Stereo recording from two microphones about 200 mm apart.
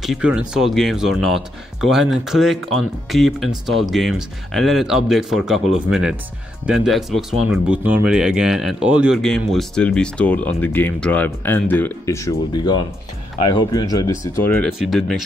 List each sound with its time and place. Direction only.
0.0 s speech: 5° right (ahead or behind)